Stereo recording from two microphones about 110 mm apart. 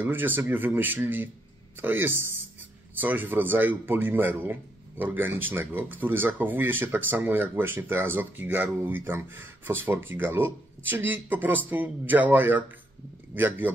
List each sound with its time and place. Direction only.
0.0 s speech: 20° right (ahead or behind)